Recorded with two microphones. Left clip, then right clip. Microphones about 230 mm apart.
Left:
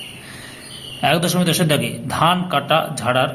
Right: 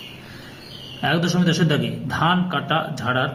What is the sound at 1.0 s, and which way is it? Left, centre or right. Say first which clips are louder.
A man's voice: left 4 dB; centre.